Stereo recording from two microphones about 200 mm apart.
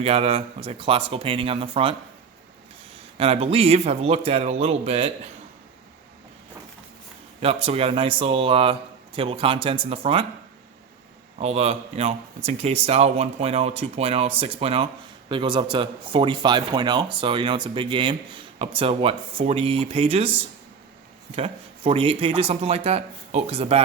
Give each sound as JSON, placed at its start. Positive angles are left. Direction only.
{"t": 0.0, "sound": "speech", "side_deg": -30}
{"t": 3.2, "sound": "speech", "side_deg": -30}
{"t": 7.4, "sound": "speech", "side_deg": -30}
{"t": 11.3, "sound": "speech", "side_deg": -30}
{"t": 21.3, "sound": "speech", "side_deg": -30}